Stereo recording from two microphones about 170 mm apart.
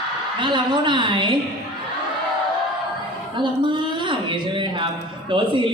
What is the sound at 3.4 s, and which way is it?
A man's voice, 30° right (ahead or behind).